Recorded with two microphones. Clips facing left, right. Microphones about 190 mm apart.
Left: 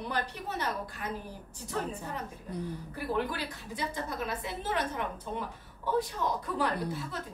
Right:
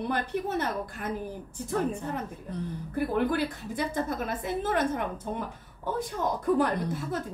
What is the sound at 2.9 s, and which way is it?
A woman's voice, 50° right (ahead or behind).